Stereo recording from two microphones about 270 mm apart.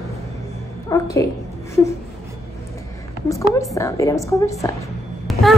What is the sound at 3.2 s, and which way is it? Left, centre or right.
A woman's voice, centre.